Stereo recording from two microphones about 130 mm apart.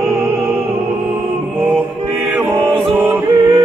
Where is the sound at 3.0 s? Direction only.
15° right (ahead or behind).